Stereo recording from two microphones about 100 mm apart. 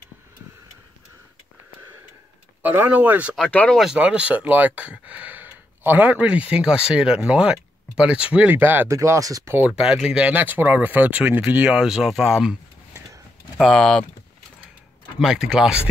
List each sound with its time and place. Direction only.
2.6 s speech: 15° right (ahead or behind)
3.7 s speech: 5° right (ahead or behind); by 9.5 s 35° right (ahead or behind)
9.7 s speech: 5° right (ahead or behind)
13.6 s speech: 5° left (ahead or behind)
15.1 s speech: 5° right (ahead or behind)